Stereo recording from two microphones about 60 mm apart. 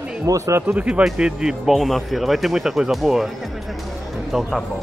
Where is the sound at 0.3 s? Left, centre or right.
Right.